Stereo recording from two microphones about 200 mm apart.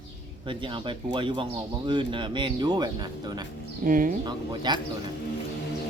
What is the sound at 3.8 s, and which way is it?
Speech, 45° right (ahead or behind).